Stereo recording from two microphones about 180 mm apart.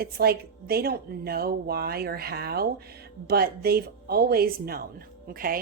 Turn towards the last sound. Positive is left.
turn(degrees=-55)  # may be behind; listen again after turning